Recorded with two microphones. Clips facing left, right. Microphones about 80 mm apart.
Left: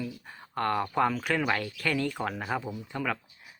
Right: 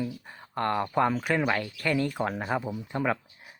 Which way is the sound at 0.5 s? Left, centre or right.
Centre.